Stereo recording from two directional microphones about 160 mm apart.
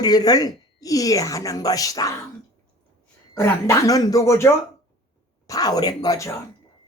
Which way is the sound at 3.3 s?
20° left (ahead or behind).